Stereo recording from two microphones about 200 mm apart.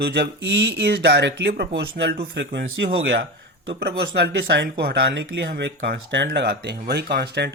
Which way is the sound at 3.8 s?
55° right (ahead or behind).